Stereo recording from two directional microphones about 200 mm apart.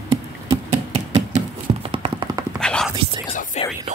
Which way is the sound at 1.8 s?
25° right (ahead or behind).